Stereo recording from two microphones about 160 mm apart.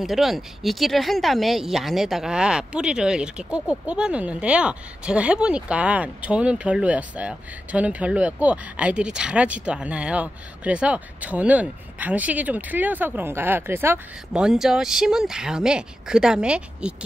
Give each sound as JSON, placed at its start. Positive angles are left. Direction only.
{"t": 0.0, "sound": "a woman's voice", "side_deg": 0}